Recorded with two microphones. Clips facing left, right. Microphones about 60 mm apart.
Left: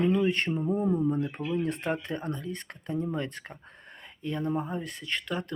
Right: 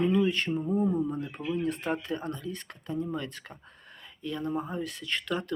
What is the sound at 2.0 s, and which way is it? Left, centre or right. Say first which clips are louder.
Speech: even; left.